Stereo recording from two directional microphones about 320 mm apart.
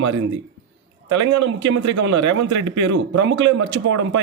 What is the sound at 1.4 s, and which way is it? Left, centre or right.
Speech, right.